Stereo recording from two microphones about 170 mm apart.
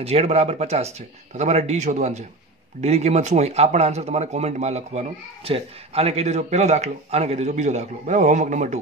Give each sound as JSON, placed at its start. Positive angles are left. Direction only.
{"t": 0.0, "sound": "speech", "side_deg": -35}